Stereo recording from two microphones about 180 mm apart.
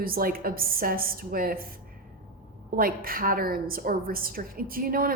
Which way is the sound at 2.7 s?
55° right (ahead or behind).